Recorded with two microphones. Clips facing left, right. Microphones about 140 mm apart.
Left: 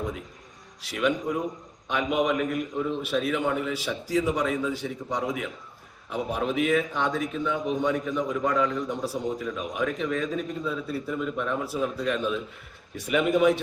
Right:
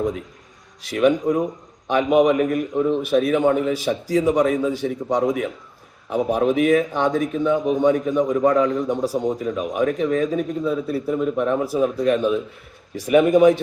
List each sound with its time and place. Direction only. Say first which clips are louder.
0.8 s a man's voice: right 8 dB; 45° right (ahead or behind)